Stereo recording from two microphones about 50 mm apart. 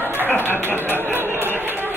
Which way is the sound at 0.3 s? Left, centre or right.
Left.